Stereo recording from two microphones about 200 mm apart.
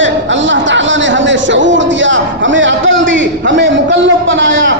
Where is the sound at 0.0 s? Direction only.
65° right (ahead or behind).